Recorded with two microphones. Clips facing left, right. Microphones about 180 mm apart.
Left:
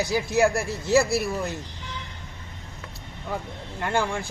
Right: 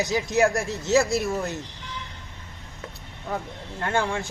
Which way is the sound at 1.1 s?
20° right (ahead or behind).